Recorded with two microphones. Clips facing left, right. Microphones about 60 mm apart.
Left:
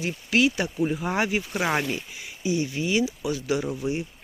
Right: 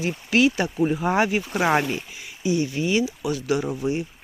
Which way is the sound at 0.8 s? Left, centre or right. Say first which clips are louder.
Right 4 dB; right.